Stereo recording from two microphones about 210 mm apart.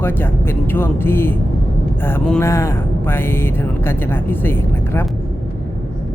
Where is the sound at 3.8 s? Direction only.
10° left (ahead or behind).